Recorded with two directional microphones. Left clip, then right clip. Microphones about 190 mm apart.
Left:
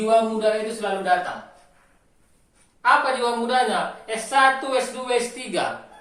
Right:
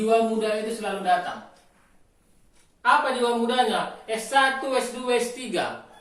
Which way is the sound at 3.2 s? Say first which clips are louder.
Left 1 dB; 10° left (ahead or behind).